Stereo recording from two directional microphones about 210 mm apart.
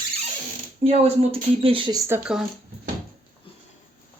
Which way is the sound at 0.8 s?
30° right (ahead or behind).